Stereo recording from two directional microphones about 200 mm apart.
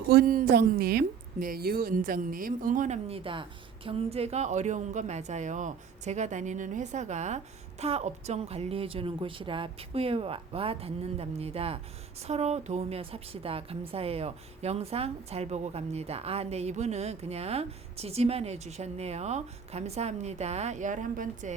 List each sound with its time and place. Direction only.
0.1 s a woman's voice: 45° right (ahead or behind)